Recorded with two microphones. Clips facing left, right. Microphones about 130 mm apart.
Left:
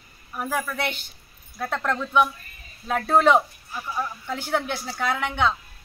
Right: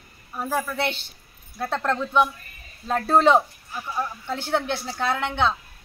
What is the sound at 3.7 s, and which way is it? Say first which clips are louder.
Speech: right 1 dB; 5° right (ahead or behind).